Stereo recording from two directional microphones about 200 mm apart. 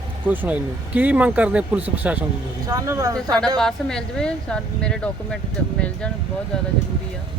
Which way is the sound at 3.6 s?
5° left (ahead or behind).